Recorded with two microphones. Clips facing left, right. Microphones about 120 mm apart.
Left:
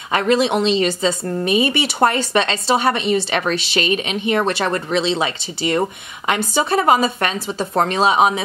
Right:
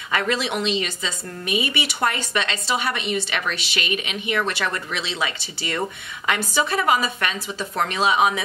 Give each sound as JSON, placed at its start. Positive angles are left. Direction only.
{"t": 0.1, "sound": "speech", "side_deg": 25}